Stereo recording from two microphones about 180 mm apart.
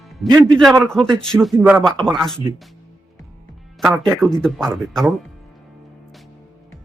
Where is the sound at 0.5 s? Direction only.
Centre (ahead or behind).